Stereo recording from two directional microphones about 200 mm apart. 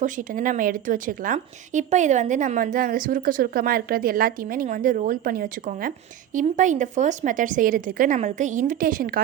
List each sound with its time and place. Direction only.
0.0 s a woman's voice: 40° right (ahead or behind)